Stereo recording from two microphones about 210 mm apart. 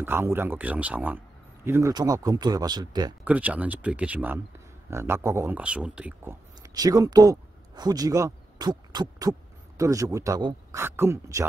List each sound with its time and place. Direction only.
0.0 s speech: 10° right (ahead or behind)
3.3 s speech: 5° right (ahead or behind)